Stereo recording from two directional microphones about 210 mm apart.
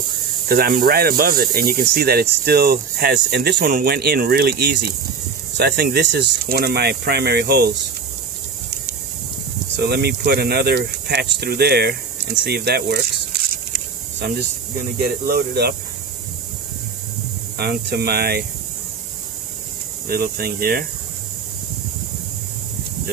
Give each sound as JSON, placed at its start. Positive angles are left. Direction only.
{"t": 0.5, "sound": "speech", "side_deg": -45}
{"t": 9.8, "sound": "speech", "side_deg": -50}
{"t": 15.2, "sound": "speech", "side_deg": -50}
{"t": 17.6, "sound": "speech", "side_deg": -50}
{"t": 20.1, "sound": "speech", "side_deg": -45}